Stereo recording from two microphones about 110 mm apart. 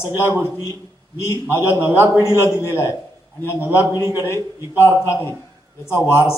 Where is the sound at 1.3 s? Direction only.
25° left (ahead or behind).